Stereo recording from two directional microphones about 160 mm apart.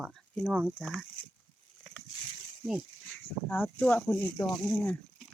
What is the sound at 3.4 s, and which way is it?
Speech, 10° left (ahead or behind).